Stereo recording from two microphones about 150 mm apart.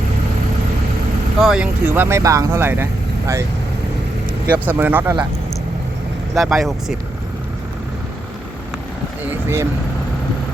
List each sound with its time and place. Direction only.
1.4 s speech: 5° right (ahead or behind)
1.9 s speech: 15° right (ahead or behind)
4.4 s speech: 10° right (ahead or behind)
6.3 s speech: centre (ahead or behind)